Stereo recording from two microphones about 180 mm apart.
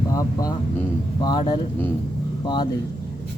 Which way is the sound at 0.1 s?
20° left (ahead or behind).